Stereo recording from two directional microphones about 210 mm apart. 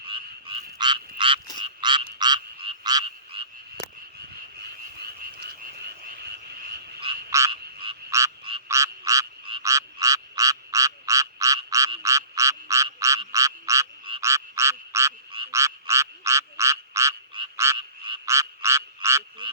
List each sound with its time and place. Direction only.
0.1 s frog: 25° right (ahead or behind)
4.9 s frog: 50° right (ahead or behind)
7.3 s frog: 15° right (ahead or behind)
7.5 s frog: 25° right (ahead or behind)